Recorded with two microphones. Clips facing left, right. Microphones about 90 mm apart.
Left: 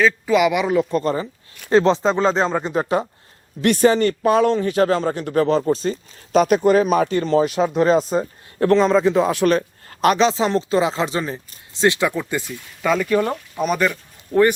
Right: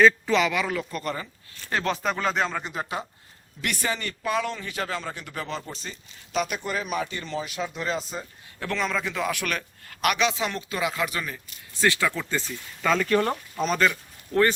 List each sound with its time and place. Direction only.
0.0 s speech: 10° left (ahead or behind)